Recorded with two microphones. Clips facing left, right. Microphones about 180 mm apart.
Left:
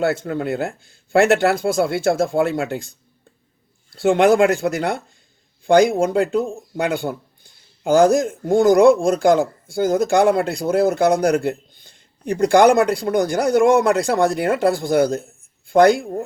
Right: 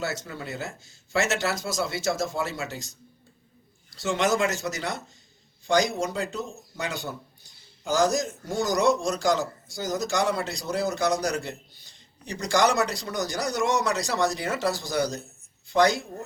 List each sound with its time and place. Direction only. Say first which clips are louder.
0.0 s a man's voice: left 12 dB; 55° left (ahead or behind)